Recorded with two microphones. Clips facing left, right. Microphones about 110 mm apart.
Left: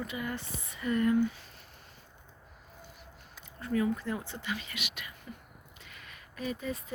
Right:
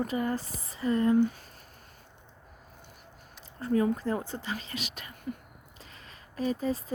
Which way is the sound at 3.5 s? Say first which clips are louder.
Right 4 dB; 35° right (ahead or behind).